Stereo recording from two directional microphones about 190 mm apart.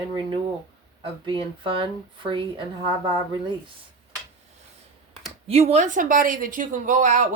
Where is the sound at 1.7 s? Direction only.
25° right (ahead or behind).